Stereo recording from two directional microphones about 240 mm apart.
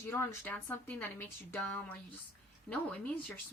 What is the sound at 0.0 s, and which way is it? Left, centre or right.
Speech, centre.